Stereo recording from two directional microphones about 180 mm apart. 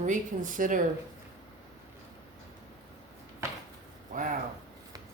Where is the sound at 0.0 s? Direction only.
45° right (ahead or behind).